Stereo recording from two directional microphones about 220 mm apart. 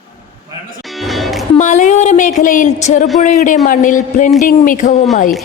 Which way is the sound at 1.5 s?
35° left (ahead or behind).